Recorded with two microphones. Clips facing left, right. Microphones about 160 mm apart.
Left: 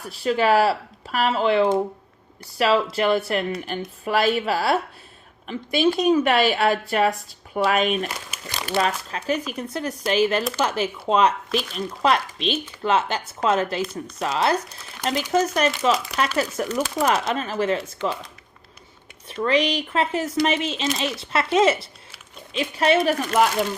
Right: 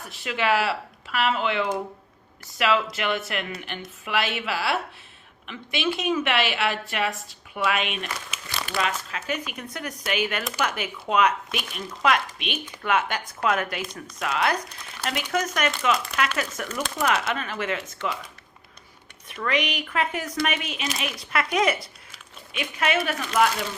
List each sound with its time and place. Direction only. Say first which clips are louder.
0.0 s a woman's voice: left 6 dB; 35° left (ahead or behind)
19.3 s a woman's voice: left 6 dB; 30° left (ahead or behind)